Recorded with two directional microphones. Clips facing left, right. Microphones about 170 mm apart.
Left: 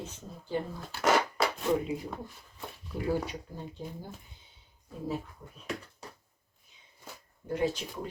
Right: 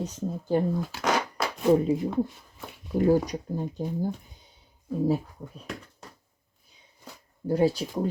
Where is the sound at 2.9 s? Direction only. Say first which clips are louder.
Right 9 dB; 45° right (ahead or behind).